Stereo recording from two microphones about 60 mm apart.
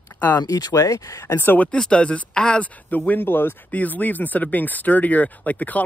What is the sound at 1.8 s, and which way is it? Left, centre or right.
Speech, centre.